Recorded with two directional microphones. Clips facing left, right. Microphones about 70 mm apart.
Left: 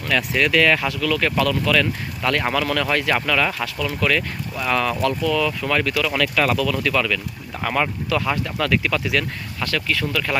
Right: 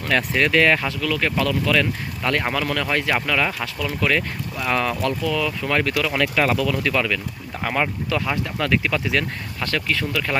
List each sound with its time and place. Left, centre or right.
0.0 s speech: right
2.4 s speech: centre
3.8 s speech: right
6.1 s speech: right